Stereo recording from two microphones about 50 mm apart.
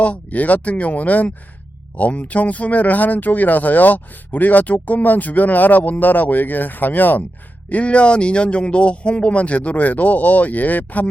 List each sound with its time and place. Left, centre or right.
0.0 s speech: left
7.7 s speech: left